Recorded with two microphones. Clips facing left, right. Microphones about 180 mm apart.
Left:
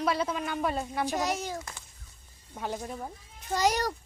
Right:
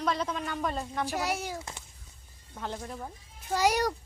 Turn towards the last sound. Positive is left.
turn(degrees=-10)  # may be behind; listen again after turning